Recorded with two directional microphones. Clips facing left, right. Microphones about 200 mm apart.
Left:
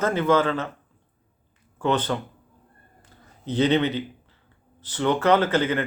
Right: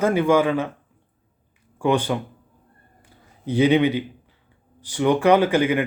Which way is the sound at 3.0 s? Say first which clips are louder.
Right 2 dB; 10° right (ahead or behind).